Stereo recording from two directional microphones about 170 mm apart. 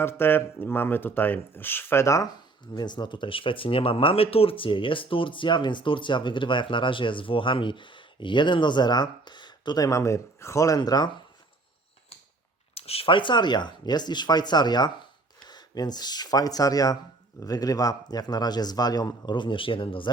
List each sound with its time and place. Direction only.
0.0 s speech: 15° left (ahead or behind)
12.7 s speech: 35° left (ahead or behind)